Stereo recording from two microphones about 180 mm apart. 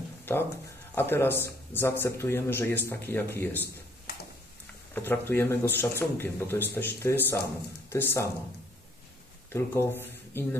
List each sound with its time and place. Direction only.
0.2 s a sound: 15° left (ahead or behind)
0.9 s a man's voice: 10° left (ahead or behind)
4.9 s a man's voice: 10° left (ahead or behind)
9.5 s speech: 15° left (ahead or behind)